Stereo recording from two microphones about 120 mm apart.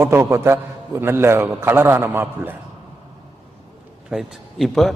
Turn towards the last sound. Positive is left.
turn(degrees=0)  # may be behind; listen again after turning